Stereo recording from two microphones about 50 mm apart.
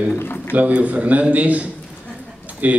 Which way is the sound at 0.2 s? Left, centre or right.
Left.